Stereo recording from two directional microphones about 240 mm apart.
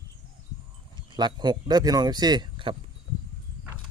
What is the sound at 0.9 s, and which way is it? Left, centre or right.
Speech, centre.